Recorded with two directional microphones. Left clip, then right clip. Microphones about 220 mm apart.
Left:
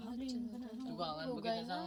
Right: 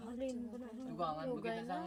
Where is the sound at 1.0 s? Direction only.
10° right (ahead or behind).